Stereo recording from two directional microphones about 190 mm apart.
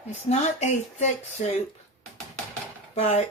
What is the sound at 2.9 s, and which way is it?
Speech, 35° left (ahead or behind).